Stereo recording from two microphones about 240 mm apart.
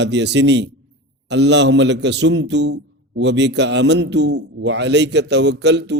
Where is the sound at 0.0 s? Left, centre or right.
Right.